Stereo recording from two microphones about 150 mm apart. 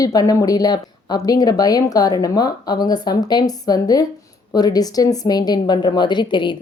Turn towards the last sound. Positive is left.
turn(degrees=30)  # may be behind; listen again after turning